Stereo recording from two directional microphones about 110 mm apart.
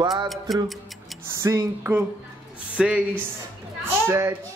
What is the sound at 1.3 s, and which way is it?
Speech, 25° right (ahead or behind).